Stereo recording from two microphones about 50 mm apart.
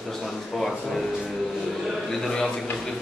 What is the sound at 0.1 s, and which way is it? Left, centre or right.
Speech, centre.